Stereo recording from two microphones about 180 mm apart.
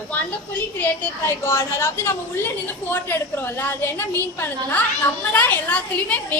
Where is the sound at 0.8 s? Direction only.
10° left (ahead or behind).